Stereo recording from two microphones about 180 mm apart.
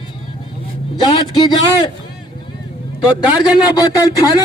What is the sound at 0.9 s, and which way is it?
Speech, 25° left (ahead or behind).